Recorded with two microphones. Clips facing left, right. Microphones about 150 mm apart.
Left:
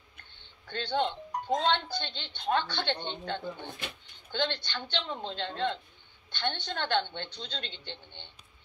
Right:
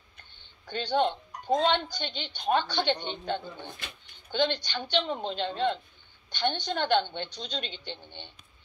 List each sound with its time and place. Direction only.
0.7 s speech: 15° right (ahead or behind)